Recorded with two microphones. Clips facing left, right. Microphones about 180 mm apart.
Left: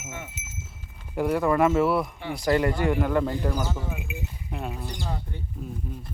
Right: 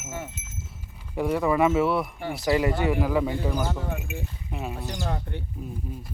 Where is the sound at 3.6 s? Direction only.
55° right (ahead or behind).